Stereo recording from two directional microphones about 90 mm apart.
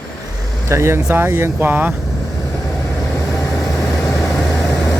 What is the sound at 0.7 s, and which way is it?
Speech, 30° right (ahead or behind).